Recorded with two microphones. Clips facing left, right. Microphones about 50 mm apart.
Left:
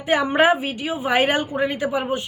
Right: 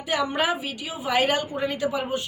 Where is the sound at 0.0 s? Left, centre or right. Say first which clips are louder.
Left 7 dB; left.